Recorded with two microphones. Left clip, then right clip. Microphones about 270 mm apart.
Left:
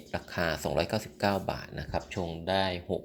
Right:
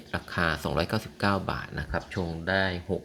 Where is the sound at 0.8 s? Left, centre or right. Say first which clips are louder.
Right 1 dB; right.